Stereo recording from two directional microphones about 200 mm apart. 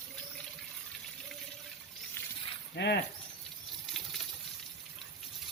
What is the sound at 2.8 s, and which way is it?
Speech, 55° left (ahead or behind).